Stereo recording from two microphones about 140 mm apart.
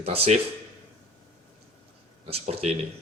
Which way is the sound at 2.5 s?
50° right (ahead or behind).